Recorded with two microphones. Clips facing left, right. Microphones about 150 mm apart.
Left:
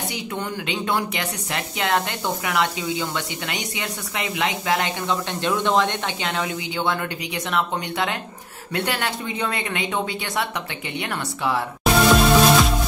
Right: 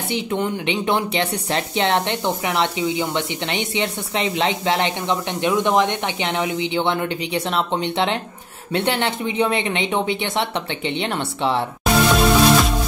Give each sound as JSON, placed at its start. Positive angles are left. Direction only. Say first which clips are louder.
{"t": 0.1, "sound": "speech", "louder": "right 6 dB", "side_deg": -25}
{"t": 11.8, "sound": "music", "louder": "left 1 dB", "side_deg": 0}